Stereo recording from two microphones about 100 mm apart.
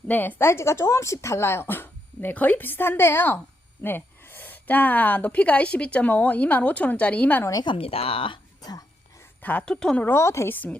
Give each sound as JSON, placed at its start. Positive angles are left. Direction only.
{"t": 0.1, "sound": "a woman's voice", "side_deg": 20}
{"t": 7.6, "sound": "speech", "side_deg": 65}
{"t": 8.6, "sound": "a sound", "side_deg": 40}
{"t": 9.4, "sound": "a woman's voice", "side_deg": 15}
{"t": 10.1, "sound": "speech", "side_deg": 30}